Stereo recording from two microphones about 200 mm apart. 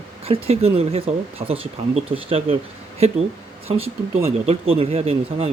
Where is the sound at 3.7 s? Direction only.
30° right (ahead or behind).